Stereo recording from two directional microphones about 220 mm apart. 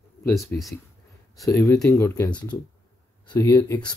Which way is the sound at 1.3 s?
15° left (ahead or behind).